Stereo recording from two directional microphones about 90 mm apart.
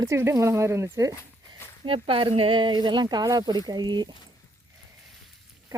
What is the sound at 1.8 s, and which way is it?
Speech, 75° right (ahead or behind).